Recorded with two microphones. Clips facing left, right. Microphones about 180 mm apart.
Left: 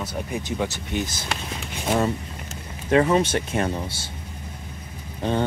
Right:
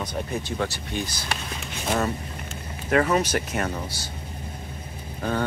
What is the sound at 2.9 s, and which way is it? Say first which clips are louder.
Speech: left 3 dB; 25° left (ahead or behind).